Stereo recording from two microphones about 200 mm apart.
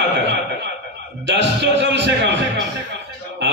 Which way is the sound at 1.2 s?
60° right (ahead or behind).